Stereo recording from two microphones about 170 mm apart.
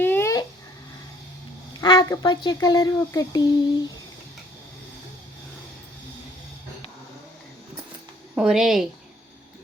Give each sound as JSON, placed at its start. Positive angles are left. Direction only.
{"t": 0.0, "sound": "babbling", "side_deg": 15}
{"t": 1.8, "sound": "speech", "side_deg": 25}
{"t": 8.4, "sound": "speech", "side_deg": -5}